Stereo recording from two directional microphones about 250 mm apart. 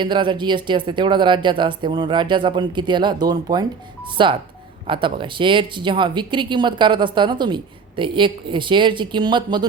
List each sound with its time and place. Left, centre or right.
0.0 s speech: centre